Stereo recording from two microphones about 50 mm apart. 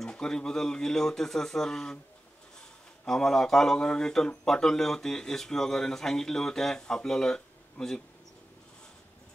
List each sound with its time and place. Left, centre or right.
0.0 s speech: centre
3.1 s speech: centre